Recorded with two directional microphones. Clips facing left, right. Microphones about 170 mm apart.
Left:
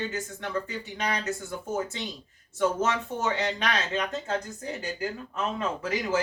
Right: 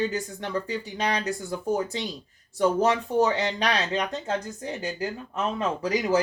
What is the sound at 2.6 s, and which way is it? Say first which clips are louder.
Speech: right 4 dB; 35° right (ahead or behind).